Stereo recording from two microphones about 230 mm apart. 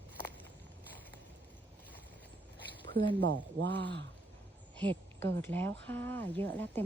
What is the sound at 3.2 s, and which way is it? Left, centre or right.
Speech, right.